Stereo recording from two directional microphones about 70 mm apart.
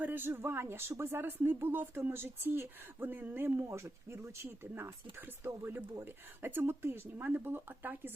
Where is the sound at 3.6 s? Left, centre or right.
Right.